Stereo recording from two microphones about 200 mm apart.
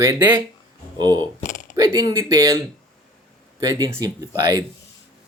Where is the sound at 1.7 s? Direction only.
20° right (ahead or behind).